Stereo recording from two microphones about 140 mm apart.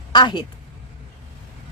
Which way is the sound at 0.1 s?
35° left (ahead or behind).